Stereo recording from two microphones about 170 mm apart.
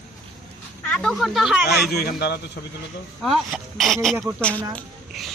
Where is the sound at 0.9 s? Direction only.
Centre (ahead or behind).